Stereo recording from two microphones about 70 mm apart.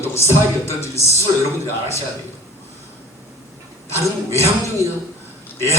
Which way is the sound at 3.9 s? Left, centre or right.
Left.